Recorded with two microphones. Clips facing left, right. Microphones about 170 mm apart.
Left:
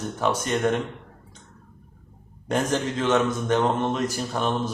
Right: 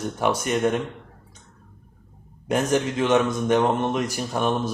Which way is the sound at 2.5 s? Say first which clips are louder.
Right 2 dB; 15° right (ahead or behind).